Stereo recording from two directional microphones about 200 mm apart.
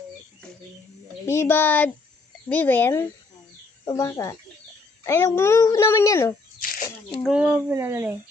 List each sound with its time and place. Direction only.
1.3 s speech: 10° left (ahead or behind)
6.6 s a sound: 45° left (ahead or behind)
7.2 s speech: 5° right (ahead or behind)